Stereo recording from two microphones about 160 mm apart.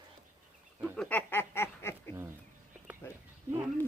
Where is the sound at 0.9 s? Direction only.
10° left (ahead or behind).